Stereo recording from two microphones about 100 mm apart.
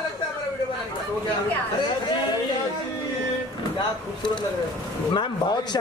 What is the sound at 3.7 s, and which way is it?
Speech, 50° left (ahead or behind).